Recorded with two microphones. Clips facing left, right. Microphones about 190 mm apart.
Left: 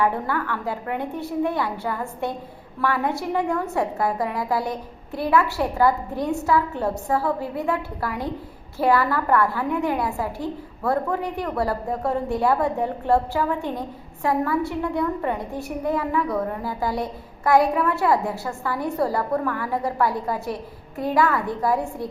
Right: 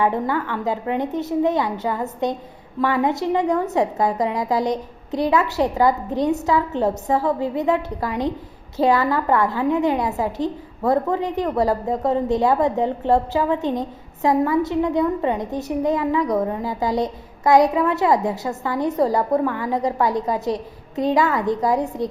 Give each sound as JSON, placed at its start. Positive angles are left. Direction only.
{"t": 0.0, "sound": "a woman's voice", "side_deg": -20}